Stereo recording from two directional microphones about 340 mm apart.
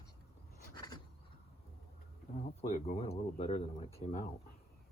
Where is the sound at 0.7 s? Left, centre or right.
Centre.